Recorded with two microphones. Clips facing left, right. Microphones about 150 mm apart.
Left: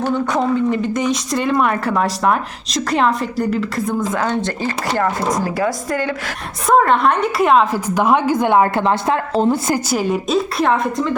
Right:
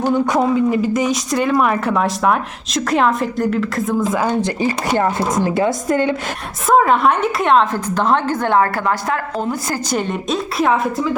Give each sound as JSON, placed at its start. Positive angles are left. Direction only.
{"t": 0.0, "sound": "speech", "side_deg": -10}
{"t": 6.7, "sound": "a woman's voice", "side_deg": 0}
{"t": 9.9, "sound": "speech", "side_deg": 5}